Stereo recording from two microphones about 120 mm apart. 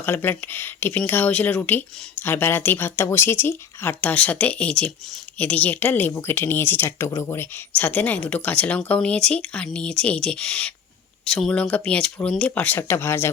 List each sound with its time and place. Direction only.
0.0 s speech: 15° left (ahead or behind)